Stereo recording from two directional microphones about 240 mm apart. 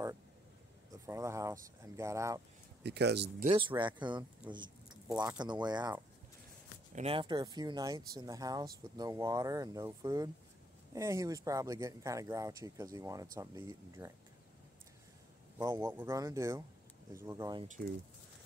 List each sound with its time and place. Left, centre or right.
1.0 s speech: centre
2.8 s speech: right
3.4 s speech: centre
15.5 s speech: centre
17.6 s speech: right